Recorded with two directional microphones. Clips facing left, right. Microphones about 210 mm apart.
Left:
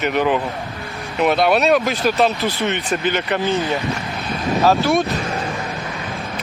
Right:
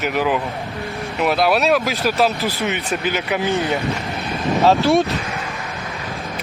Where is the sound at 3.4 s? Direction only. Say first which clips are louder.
Right 1 dB; 15° right (ahead or behind).